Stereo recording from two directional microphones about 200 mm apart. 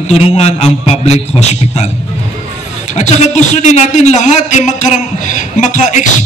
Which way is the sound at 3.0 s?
35° left (ahead or behind).